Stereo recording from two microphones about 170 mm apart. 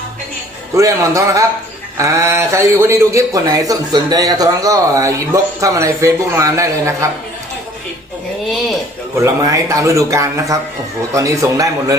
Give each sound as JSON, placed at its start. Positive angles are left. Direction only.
{"t": 0.7, "sound": "a man's voice", "side_deg": -20}
{"t": 8.4, "sound": "speech", "side_deg": 0}
{"t": 9.1, "sound": "speech", "side_deg": -20}